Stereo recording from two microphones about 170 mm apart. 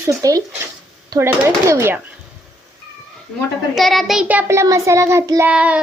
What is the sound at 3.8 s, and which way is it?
A child's voice, centre (ahead or behind).